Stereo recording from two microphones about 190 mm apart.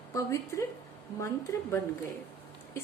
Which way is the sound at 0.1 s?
15° left (ahead or behind).